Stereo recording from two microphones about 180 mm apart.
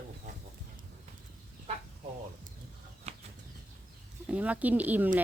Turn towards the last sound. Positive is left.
turn(degrees=-10)  # may be behind; listen again after turning